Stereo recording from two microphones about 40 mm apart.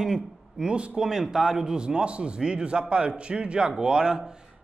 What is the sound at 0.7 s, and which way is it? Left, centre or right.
Speech, right.